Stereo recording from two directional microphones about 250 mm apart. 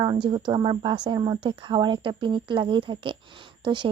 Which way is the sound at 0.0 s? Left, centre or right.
Centre.